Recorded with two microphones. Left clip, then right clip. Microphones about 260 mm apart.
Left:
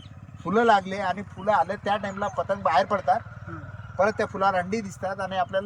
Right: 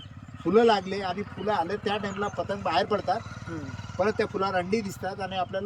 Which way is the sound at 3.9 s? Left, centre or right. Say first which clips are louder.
Left 3 dB; centre.